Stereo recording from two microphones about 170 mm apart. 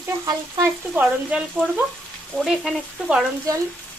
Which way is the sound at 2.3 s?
5° right (ahead or behind).